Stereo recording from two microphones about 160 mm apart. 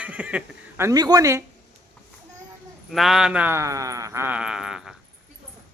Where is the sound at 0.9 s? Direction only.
25° right (ahead or behind).